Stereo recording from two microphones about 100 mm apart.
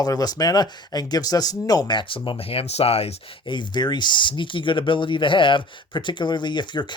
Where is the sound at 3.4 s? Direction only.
50° left (ahead or behind).